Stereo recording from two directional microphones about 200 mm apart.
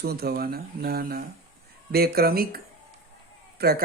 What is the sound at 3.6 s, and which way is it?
Speech, 50° right (ahead or behind).